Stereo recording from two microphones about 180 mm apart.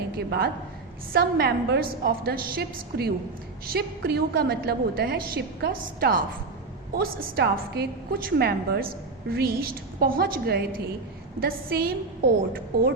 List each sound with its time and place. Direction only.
0.2 s a woman's voice: 60° right (ahead or behind)